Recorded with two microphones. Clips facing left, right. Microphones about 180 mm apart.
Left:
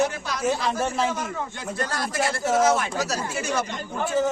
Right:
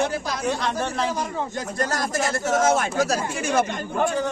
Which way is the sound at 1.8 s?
45° right (ahead or behind).